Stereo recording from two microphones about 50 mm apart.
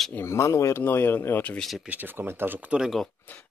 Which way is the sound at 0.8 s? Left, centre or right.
Left.